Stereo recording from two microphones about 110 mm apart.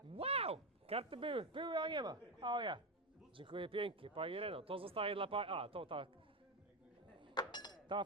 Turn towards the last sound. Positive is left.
turn(degrees=40)  # may be behind; listen again after turning